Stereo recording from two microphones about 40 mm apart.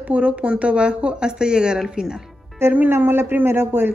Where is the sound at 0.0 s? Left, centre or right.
Right; by 2.2 s centre.